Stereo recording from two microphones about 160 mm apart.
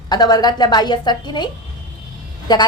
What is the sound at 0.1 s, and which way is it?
A woman's voice, 25° left (ahead or behind).